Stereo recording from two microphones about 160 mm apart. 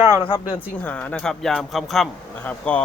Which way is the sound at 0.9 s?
10° left (ahead or behind).